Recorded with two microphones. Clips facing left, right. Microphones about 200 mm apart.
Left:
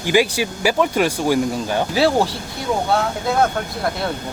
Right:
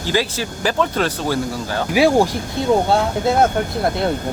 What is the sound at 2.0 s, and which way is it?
Speech, 15° right (ahead or behind).